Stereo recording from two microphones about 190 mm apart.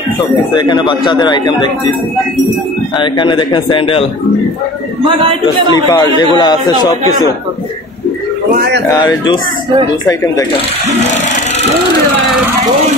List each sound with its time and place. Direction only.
0.6 s speech: 25° left (ahead or behind)
3.0 s speech: 25° left (ahead or behind)
5.0 s a man's voice: 25° right (ahead or behind)
5.9 s speech: 20° left (ahead or behind)
9.0 s speech: 20° left (ahead or behind)